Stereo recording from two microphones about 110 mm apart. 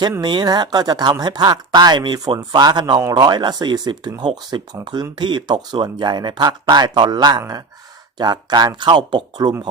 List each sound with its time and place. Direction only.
0.2 s speech: 45° right (ahead or behind)